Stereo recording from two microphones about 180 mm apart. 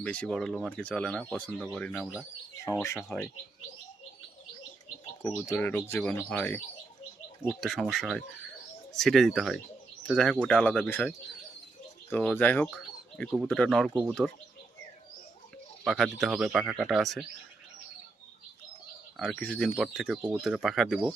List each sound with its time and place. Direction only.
0.0 s speech: 5° left (ahead or behind)
5.2 s speech: 10° left (ahead or behind)
12.1 s speech: 10° left (ahead or behind)
15.8 s speech: centre (ahead or behind)
19.1 s speech: centre (ahead or behind)